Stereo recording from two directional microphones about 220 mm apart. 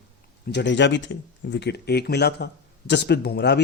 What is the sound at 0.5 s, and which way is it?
Speech, 55° left (ahead or behind).